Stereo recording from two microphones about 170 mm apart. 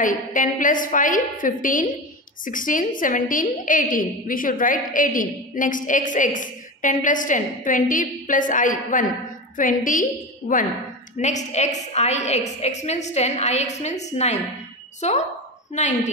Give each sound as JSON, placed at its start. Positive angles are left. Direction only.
{"t": 0.0, "sound": "a woman's voice", "side_deg": 50}
{"t": 11.1, "sound": "a woman's voice", "side_deg": 45}